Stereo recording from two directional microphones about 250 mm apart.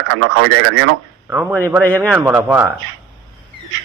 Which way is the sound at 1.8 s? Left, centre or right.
Centre.